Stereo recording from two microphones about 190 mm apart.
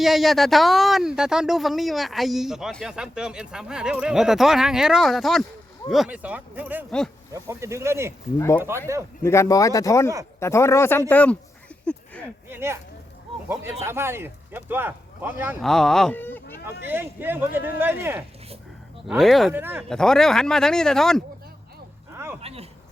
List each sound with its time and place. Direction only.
0.0 s speech: centre (ahead or behind)
9.2 s speech: 15° left (ahead or behind)
12.5 s speech: 10° right (ahead or behind)
15.6 s speech: centre (ahead or behind)
16.8 s speech: 10° right (ahead or behind)
19.0 s speech: centre (ahead or behind)
19.5 s speech: 10° right (ahead or behind)
19.9 s speech: 5° left (ahead or behind)
22.4 s speech: 30° right (ahead or behind)